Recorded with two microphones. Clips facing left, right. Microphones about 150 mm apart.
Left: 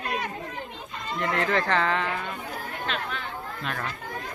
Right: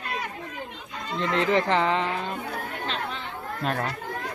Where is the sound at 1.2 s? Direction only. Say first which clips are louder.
Right 3 dB; 20° right (ahead or behind).